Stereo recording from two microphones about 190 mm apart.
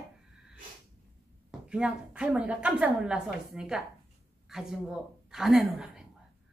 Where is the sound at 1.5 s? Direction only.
5° right (ahead or behind).